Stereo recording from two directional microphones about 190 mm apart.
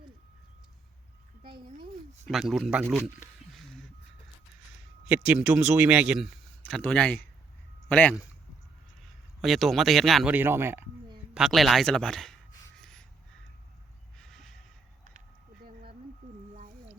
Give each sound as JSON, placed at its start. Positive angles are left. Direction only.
{"t": 2.2, "sound": "speech", "side_deg": 0}
{"t": 3.5, "sound": "music", "side_deg": 0}
{"t": 5.0, "sound": "speech", "side_deg": -10}
{"t": 9.4, "sound": "speech", "side_deg": 0}
{"t": 10.3, "sound": "speech", "side_deg": -10}
{"t": 11.3, "sound": "speech", "side_deg": 0}
{"t": 12.7, "sound": "gasp", "side_deg": 5}
{"t": 14.2, "sound": "crow", "side_deg": 0}
{"t": 15.6, "sound": "a sound", "side_deg": -50}